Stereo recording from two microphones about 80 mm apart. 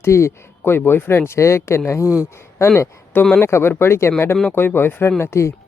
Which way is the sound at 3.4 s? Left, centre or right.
Left.